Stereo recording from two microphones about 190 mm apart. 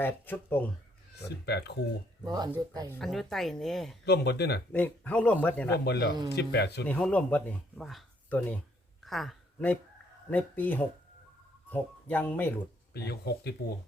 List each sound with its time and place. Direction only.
0.0 s speech: 10° left (ahead or behind)
1.5 s speech: 60° left (ahead or behind)
2.2 s speech: 20° right (ahead or behind)
2.9 s speech: centre (ahead or behind)
4.0 s speech: 60° left (ahead or behind)
4.7 s speech: 10° left (ahead or behind)
5.8 s speech: 60° left (ahead or behind)
6.8 s speech: 5° left (ahead or behind)
9.0 s a sound: centre (ahead or behind)
10.2 s speech: 10° left (ahead or behind)
12.9 s speech: 60° left (ahead or behind)